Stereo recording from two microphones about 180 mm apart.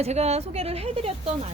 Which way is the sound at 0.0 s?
35° right (ahead or behind).